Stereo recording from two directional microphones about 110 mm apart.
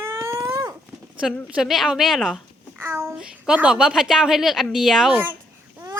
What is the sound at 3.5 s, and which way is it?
A woman's voice, 10° right (ahead or behind).